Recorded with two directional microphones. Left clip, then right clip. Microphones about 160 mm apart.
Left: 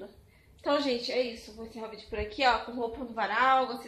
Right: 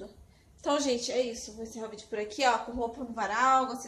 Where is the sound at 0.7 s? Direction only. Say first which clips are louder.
Even; 5° right (ahead or behind).